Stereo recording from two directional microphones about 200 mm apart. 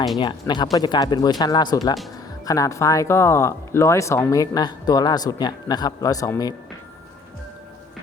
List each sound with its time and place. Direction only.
0.2 s speech: 25° left (ahead or behind)